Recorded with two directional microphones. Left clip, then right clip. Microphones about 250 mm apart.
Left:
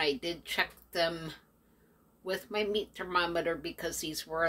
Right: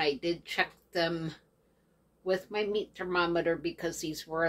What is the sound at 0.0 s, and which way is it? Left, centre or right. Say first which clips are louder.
Speech: right 2 dB; centre.